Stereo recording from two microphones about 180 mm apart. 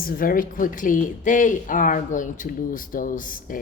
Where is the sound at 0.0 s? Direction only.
55° left (ahead or behind).